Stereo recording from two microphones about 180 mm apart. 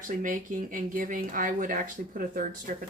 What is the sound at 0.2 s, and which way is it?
Speech, 50° right (ahead or behind).